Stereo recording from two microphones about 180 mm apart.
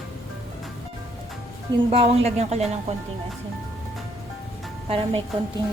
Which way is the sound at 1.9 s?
35° right (ahead or behind).